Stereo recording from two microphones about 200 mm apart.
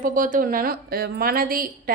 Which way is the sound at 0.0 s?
40° right (ahead or behind).